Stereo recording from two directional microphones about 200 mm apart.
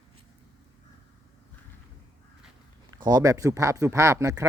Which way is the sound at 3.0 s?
20° right (ahead or behind).